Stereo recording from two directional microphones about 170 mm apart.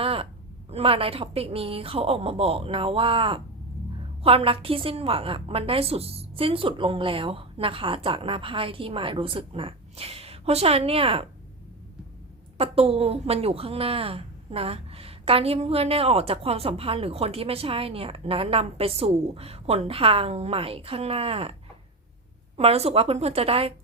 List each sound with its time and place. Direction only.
0.0 s a sound: 35° right (ahead or behind)
0.7 s a woman's voice: 35° right (ahead or behind)
12.5 s a woman's voice: 35° right (ahead or behind)
22.5 s a woman's voice: 35° right (ahead or behind)